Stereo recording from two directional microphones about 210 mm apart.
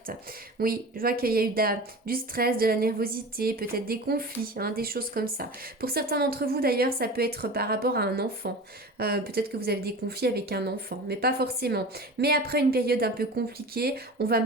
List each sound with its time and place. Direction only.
0.6 s a woman's voice: 45° right (ahead or behind)